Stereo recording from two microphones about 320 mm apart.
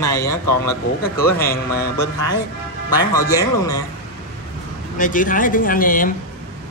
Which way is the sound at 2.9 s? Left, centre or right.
Centre.